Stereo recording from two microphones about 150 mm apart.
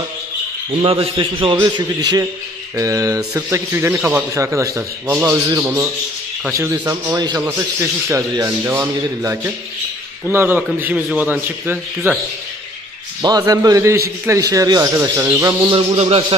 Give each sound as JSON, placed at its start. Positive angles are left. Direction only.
{"t": 0.8, "sound": "a man's voice", "side_deg": -40}
{"t": 13.4, "sound": "speech", "side_deg": -20}
{"t": 15.9, "sound": "a man's voice", "side_deg": -45}